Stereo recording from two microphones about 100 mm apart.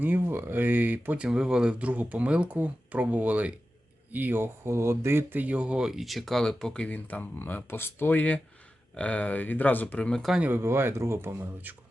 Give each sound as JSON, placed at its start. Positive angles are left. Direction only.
{"t": 0.0, "sound": "speech", "side_deg": -20}
{"t": 10.5, "sound": "speech", "side_deg": -25}